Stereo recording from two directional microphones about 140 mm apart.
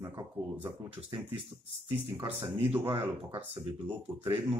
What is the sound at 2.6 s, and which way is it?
Speech, 15° right (ahead or behind).